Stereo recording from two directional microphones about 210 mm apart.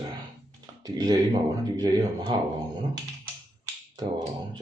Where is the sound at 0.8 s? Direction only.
20° right (ahead or behind).